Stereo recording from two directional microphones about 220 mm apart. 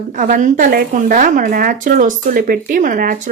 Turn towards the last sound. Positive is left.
turn(degrees=-40)  # may be behind; listen again after turning